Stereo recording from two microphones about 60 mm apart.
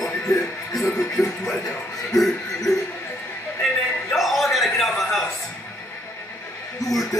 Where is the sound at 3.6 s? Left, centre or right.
Centre.